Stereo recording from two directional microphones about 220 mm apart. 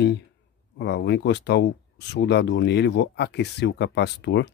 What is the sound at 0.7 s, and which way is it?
Speech, 50° left (ahead or behind).